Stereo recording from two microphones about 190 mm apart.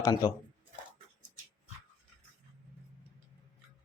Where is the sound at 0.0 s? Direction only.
20° left (ahead or behind).